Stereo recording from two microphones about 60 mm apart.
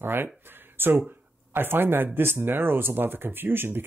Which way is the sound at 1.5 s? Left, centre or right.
Right.